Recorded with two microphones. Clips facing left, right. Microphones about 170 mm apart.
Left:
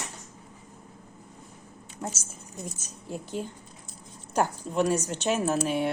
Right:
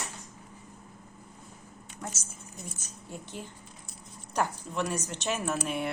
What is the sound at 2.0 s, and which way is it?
Speech, 30° left (ahead or behind).